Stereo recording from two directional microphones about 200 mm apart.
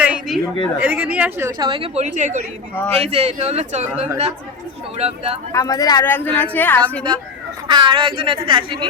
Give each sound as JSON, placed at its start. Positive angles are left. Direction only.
{"t": 0.0, "sound": "a sound", "side_deg": -5}
{"t": 0.8, "sound": "a woman's voice", "side_deg": -10}
{"t": 4.9, "sound": "speech", "side_deg": -30}
{"t": 5.5, "sound": "speech", "side_deg": 15}
{"t": 7.7, "sound": "a woman's voice", "side_deg": -25}